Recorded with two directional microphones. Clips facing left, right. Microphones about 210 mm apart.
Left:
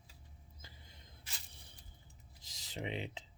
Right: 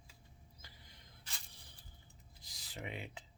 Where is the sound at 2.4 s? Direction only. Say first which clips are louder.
Left 5 dB; 20° left (ahead or behind).